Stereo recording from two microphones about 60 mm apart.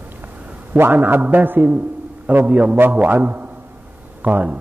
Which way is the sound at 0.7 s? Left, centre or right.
Right.